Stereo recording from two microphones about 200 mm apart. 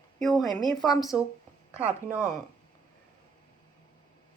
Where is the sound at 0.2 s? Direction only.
Centre (ahead or behind).